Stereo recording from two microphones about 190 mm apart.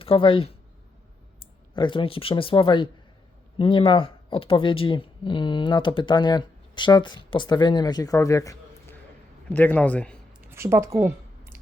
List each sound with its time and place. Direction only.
0.0 s speech: 30° left (ahead or behind)
1.7 s a man's voice: 25° left (ahead or behind); by 10.2 s 5° left (ahead or behind)
10.5 s speech: 15° right (ahead or behind)